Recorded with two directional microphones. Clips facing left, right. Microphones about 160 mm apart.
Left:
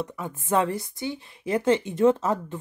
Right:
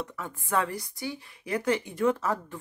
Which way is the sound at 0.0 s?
20° left (ahead or behind).